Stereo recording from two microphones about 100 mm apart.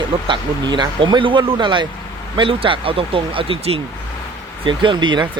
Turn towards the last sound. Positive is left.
turn(degrees=-50)  # may be behind; listen again after turning